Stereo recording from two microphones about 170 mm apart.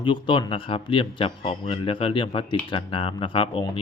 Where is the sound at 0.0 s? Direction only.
30° left (ahead or behind).